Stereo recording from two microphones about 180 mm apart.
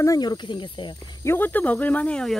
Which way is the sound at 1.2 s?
10° left (ahead or behind).